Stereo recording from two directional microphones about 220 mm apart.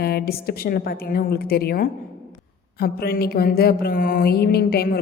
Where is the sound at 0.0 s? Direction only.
45° left (ahead or behind).